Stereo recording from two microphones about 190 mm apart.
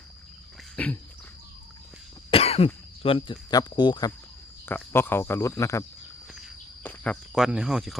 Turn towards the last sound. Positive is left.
turn(degrees=0)  # may be behind; listen again after turning